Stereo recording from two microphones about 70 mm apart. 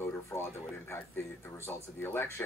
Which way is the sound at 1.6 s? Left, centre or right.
Left.